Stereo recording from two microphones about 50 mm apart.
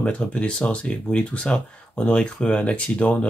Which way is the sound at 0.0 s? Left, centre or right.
Left.